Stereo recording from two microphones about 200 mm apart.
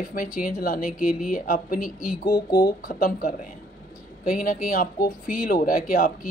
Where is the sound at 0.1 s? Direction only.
45° left (ahead or behind).